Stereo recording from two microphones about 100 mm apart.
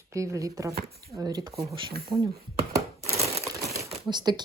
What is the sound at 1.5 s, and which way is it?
Speech, 55° right (ahead or behind).